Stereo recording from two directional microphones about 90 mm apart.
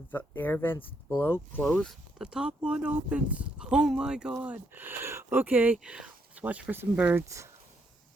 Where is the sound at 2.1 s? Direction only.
10° right (ahead or behind).